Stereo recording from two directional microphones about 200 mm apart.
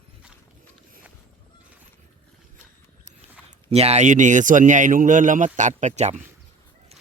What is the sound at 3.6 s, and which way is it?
A man's voice, 30° right (ahead or behind).